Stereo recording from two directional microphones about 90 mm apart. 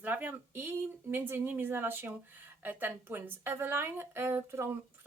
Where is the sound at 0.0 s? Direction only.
20° right (ahead or behind).